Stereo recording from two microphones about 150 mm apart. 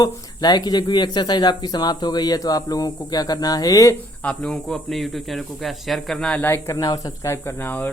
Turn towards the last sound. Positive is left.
turn(degrees=10)  # may be behind; listen again after turning